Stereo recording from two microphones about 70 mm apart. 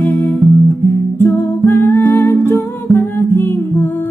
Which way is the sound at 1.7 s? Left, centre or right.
Left.